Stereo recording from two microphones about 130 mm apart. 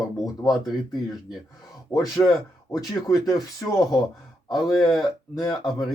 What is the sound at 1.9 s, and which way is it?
Speech, 30° left (ahead or behind).